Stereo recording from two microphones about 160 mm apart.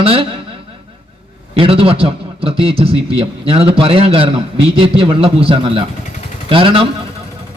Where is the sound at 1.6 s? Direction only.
35° right (ahead or behind).